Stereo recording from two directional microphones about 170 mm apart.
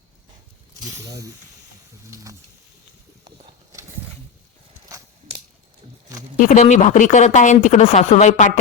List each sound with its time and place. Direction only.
0.8 s speech: 20° right (ahead or behind)
2.0 s speech: 20° right (ahead or behind)
3.2 s a sound: 20° right (ahead or behind)
6.3 s speech: 50° left (ahead or behind)